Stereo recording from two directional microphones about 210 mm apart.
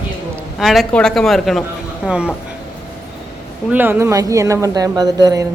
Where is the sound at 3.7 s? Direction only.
10° right (ahead or behind).